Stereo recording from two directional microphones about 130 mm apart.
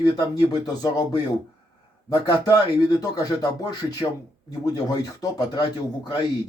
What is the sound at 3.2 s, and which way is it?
Speech, 30° left (ahead or behind).